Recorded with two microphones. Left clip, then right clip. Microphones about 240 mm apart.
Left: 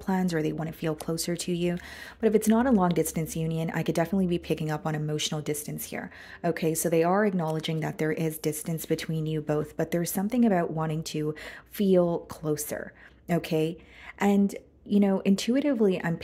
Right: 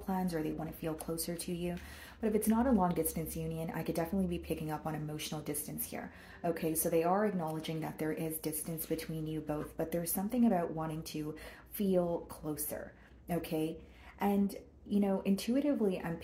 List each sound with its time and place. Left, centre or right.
0.0 s speech: left
14.9 s speech: left